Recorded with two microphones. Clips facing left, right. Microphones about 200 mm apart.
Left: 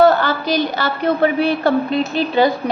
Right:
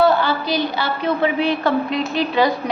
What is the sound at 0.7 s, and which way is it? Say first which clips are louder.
Speech: left 3 dB; 45° left (ahead or behind).